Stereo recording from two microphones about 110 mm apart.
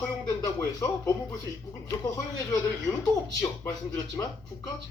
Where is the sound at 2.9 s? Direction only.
30° left (ahead or behind).